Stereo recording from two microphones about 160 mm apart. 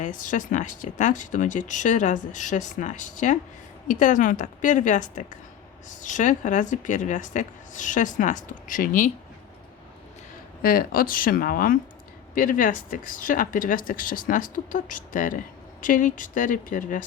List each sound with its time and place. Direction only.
0.0 s speech: 55° left (ahead or behind)
10.6 s speech: 65° left (ahead or behind)